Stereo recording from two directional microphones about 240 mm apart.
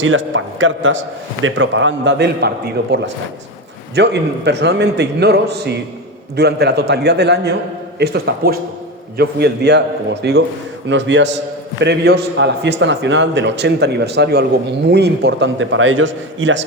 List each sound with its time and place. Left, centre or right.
0.0 s a man's voice: right